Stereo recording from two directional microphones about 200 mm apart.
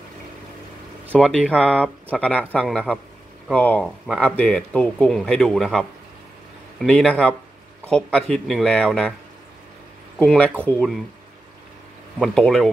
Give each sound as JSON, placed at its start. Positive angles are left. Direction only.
{"t": 1.1, "sound": "speech", "side_deg": 5}
{"t": 10.1, "sound": "speech", "side_deg": 5}
{"t": 12.2, "sound": "speech", "side_deg": 0}